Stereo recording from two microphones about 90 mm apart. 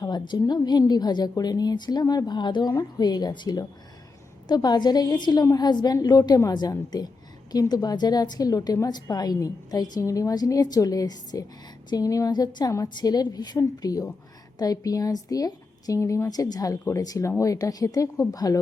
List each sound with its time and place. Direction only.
0.0 s a woman's voice: 50° left (ahead or behind)